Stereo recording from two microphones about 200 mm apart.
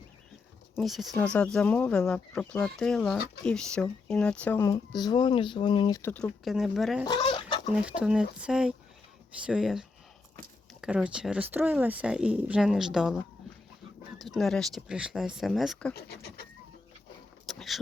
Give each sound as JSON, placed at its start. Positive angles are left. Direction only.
{"t": 0.8, "sound": "speech", "side_deg": 0}
{"t": 4.6, "sound": "speech", "side_deg": 20}
{"t": 6.0, "sound": "speech", "side_deg": 10}
{"t": 7.0, "sound": "chicken", "side_deg": 25}
{"t": 7.8, "sound": "speech", "side_deg": -5}
{"t": 14.2, "sound": "speech", "side_deg": 0}
{"t": 16.0, "sound": "bird", "side_deg": 50}
{"t": 17.5, "sound": "vehicle", "side_deg": 0}